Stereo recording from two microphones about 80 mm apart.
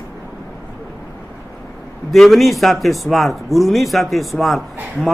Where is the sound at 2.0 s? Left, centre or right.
Centre.